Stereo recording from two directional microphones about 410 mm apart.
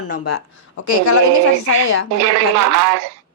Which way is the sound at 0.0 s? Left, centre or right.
Left.